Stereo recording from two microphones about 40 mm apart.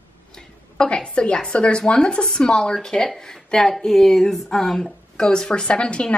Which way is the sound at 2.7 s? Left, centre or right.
Centre.